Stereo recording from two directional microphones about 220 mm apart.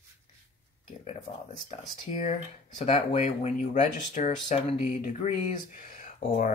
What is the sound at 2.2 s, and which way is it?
Speech, 30° left (ahead or behind).